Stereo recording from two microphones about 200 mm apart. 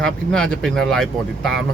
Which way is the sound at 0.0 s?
5° left (ahead or behind).